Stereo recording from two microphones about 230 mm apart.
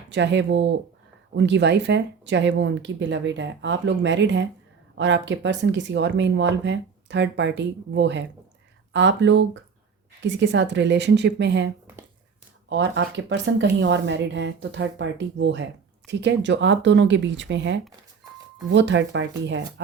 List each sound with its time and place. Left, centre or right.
0.1 s speech: right